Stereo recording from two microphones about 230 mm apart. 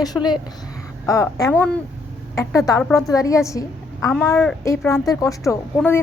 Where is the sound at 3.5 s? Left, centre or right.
Centre.